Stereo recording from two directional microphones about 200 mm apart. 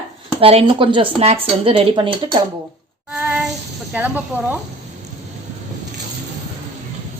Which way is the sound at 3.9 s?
10° right (ahead or behind).